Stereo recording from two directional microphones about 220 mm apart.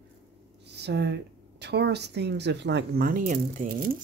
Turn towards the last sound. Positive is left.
turn(degrees=-40)  # may be behind; listen again after turning